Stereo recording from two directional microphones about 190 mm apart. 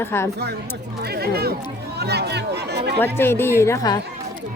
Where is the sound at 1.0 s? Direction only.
55° right (ahead or behind).